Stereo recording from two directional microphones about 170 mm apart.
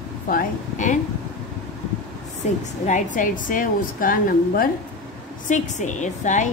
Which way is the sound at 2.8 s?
50° left (ahead or behind).